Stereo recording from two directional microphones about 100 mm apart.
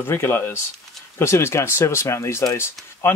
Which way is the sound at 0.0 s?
20° left (ahead or behind).